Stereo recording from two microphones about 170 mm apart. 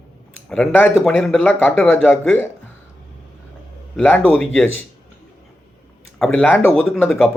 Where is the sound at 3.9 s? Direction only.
5° left (ahead or behind).